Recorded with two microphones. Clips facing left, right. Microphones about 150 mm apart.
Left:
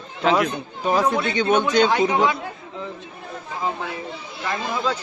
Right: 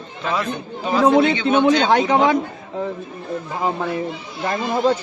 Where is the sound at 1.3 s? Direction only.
45° left (ahead or behind).